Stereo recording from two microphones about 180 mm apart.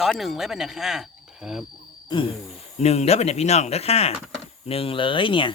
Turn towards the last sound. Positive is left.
turn(degrees=30)  # may be behind; listen again after turning